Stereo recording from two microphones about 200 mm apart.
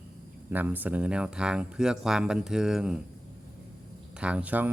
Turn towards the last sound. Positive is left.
turn(degrees=-10)  # may be behind; listen again after turning